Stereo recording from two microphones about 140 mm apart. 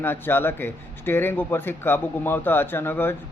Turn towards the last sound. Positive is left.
turn(degrees=15)  # may be behind; listen again after turning